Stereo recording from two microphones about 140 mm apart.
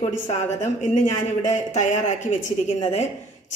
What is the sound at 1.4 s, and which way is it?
A woman's voice, 60° left (ahead or behind).